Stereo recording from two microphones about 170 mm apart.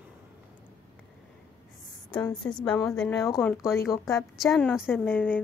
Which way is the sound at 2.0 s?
5° left (ahead or behind).